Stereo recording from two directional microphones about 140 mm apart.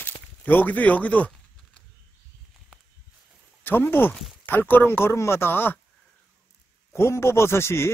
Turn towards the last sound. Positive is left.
turn(degrees=20)  # may be behind; listen again after turning